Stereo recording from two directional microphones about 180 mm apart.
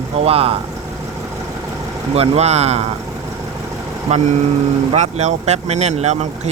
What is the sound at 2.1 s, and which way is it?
Speech, 35° right (ahead or behind).